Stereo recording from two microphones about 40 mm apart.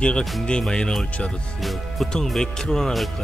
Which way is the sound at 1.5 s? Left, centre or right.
Centre.